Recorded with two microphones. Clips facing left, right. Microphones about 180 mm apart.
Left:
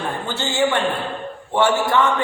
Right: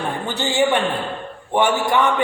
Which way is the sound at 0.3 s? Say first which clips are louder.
Right 2 dB; 15° right (ahead or behind).